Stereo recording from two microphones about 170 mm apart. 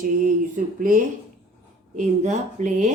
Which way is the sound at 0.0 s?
50° right (ahead or behind).